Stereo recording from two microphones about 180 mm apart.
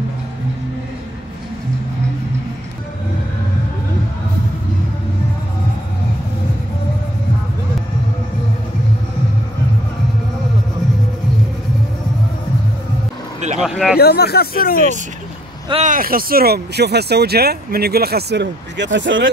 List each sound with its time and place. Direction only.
13.6 s speech: 5° right (ahead or behind)
13.9 s speech: 60° left (ahead or behind)
15.7 s speech: 45° right (ahead or behind); by 19.2 s 90° right